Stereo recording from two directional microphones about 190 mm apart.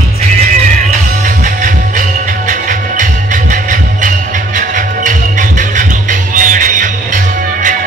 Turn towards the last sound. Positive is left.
turn(degrees=-45)  # may be behind; listen again after turning